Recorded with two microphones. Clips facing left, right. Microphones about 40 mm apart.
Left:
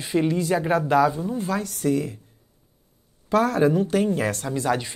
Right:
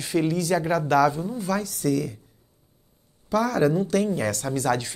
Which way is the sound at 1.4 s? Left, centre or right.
Left.